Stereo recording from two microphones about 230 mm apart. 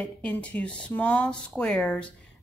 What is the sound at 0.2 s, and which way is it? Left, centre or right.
A woman's voice, centre.